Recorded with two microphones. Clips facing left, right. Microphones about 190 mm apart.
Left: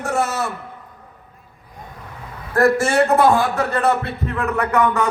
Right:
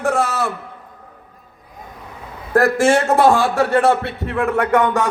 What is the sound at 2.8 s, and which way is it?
Speech, 90° right.